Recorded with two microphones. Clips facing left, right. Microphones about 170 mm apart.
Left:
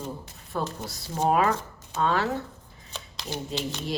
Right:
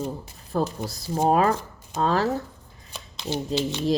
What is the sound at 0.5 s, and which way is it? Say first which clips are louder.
Speech: right 5 dB; 35° right (ahead or behind).